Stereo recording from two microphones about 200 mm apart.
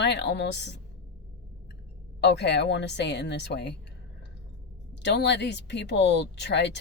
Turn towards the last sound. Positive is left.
turn(degrees=60)  # may be behind; listen again after turning